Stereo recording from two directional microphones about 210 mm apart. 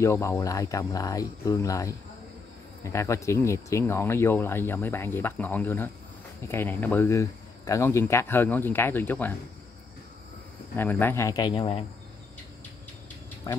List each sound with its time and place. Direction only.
0.0 s speech: 15° left (ahead or behind)
10.8 s speech: 10° left (ahead or behind)
13.5 s speech: 15° left (ahead or behind)